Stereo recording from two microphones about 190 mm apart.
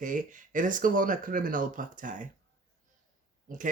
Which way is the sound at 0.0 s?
45° right (ahead or behind).